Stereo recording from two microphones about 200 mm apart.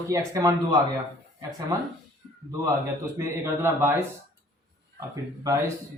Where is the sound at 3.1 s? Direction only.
15° right (ahead or behind).